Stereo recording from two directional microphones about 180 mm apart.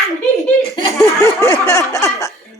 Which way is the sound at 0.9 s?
15° left (ahead or behind).